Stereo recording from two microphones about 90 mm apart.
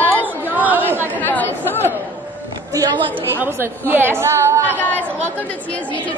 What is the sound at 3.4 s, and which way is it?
Speech, 25° right (ahead or behind).